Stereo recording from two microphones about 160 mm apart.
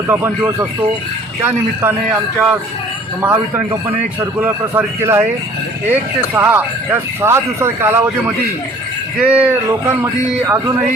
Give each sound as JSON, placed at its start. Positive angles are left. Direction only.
{"t": 0.1, "sound": "speech", "side_deg": -15}
{"t": 3.2, "sound": "speech", "side_deg": -10}
{"t": 9.1, "sound": "speech", "side_deg": -10}